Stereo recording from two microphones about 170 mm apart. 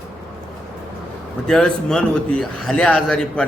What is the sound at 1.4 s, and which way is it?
A man's voice, 5° left (ahead or behind).